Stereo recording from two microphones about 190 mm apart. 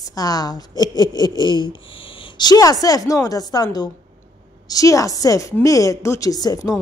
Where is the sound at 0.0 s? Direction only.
20° left (ahead or behind).